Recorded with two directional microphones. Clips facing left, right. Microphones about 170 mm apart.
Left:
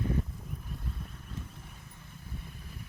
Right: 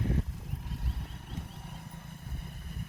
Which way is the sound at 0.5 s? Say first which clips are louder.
Right 1 dB; 75° right (ahead or behind).